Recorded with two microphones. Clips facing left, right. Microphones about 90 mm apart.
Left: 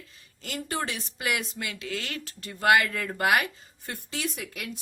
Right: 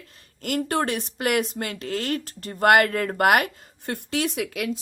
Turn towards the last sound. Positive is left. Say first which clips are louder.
# right 8 dB
turn(degrees=-85)